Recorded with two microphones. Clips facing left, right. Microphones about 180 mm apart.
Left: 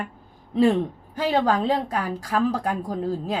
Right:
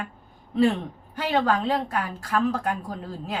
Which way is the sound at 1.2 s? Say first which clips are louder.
Left 2 dB; 35° left (ahead or behind).